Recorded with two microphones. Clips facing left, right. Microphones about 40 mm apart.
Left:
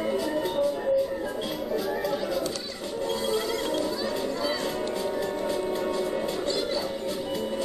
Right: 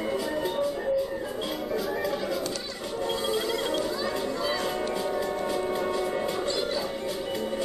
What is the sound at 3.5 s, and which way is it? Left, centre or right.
Children playing, centre.